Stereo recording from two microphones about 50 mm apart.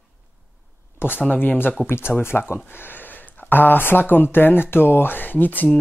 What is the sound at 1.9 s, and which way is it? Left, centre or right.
Speech, left.